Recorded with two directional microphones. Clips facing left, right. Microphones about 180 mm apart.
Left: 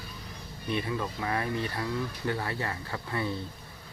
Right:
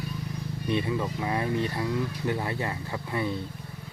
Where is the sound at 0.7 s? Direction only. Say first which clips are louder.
Right 3 dB; 20° right (ahead or behind).